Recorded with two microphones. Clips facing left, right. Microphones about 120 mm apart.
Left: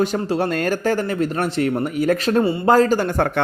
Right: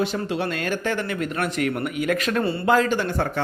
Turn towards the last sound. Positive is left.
turn(degrees=55)  # may be behind; listen again after turning